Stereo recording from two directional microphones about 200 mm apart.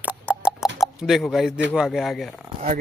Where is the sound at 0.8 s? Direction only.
Centre (ahead or behind).